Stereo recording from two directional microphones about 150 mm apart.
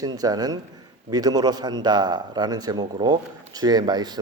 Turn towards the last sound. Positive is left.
turn(degrees=-30)  # may be behind; listen again after turning